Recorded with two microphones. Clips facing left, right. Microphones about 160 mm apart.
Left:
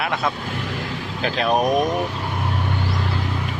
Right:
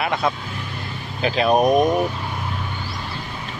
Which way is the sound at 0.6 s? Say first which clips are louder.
Left 5 dB; 90° left.